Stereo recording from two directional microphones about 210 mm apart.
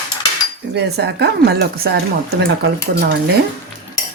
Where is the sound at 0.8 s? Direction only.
55° right (ahead or behind).